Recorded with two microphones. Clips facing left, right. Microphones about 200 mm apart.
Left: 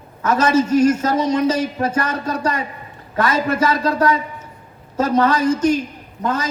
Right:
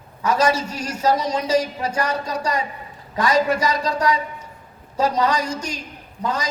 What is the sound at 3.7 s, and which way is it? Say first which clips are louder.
Speech: left 4 dB; 50° left (ahead or behind).